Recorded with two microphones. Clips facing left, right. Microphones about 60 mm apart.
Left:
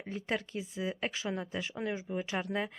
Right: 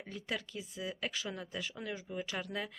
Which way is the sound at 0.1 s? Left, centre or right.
Left.